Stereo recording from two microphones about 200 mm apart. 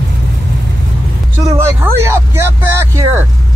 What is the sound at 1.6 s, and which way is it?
Speech, 10° right (ahead or behind).